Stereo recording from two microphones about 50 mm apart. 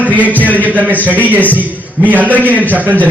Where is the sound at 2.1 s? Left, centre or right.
Right.